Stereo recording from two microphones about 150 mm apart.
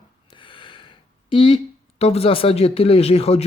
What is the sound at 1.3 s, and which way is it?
Speech, 35° left (ahead or behind).